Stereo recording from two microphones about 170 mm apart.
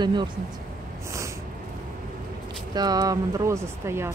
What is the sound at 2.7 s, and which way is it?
Speech, 25° right (ahead or behind).